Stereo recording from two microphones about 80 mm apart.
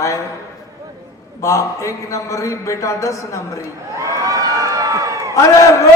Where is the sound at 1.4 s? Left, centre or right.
Left.